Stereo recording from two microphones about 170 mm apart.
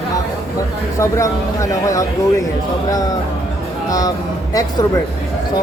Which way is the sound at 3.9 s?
20° left (ahead or behind).